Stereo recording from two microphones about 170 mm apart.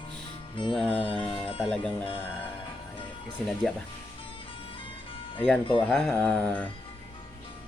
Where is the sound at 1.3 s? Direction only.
30° left (ahead or behind).